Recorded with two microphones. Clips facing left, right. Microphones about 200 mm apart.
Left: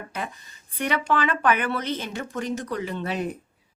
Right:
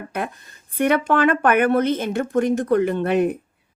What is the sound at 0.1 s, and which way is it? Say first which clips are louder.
A woman's voice: right 7 dB; 60° right (ahead or behind).